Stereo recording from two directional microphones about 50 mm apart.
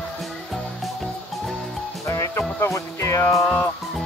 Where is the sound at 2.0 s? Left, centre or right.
Left.